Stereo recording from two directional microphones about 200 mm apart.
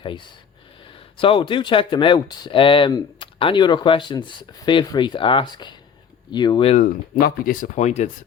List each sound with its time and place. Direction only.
1.2 s speech: 25° left (ahead or behind)
7.2 s speech: 45° left (ahead or behind)